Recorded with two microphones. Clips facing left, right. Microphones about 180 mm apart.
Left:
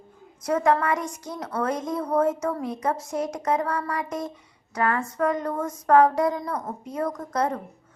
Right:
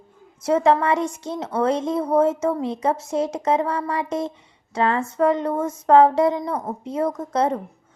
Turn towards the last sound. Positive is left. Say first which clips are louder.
# right 4 dB
turn(degrees=-25)  # may be behind; listen again after turning